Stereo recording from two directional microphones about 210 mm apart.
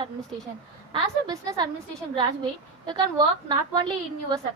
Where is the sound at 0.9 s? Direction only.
20° right (ahead or behind).